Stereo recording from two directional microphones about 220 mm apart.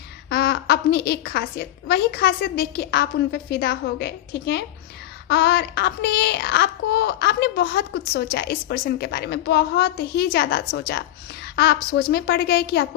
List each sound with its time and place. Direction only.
0.3 s speech: 50° left (ahead or behind)